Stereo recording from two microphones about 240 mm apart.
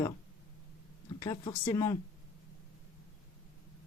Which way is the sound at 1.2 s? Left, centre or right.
Centre.